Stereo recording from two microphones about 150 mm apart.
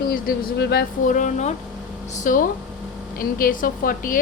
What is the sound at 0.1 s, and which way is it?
A woman's voice, 90° left.